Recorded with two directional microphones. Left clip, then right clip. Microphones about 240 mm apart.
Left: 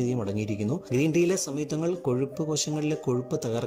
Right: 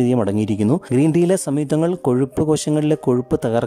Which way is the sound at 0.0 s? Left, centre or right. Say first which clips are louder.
Right 11 dB; right.